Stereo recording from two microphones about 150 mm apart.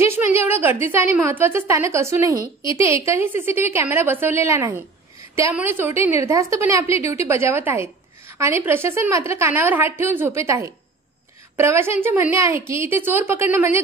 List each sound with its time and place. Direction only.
0.1 s a woman's voice: 15° right (ahead or behind)